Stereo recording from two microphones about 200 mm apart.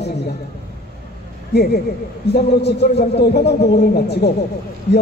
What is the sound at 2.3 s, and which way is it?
A man's voice, 55° left (ahead or behind).